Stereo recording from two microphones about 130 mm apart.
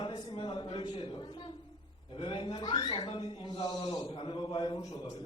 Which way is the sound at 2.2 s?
40° left (ahead or behind).